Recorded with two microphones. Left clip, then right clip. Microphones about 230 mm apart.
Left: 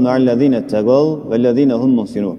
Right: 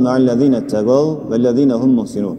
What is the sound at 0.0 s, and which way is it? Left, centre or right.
A man's voice, left.